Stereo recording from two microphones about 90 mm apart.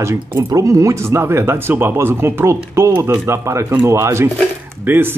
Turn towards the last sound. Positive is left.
turn(degrees=-25)  # may be behind; listen again after turning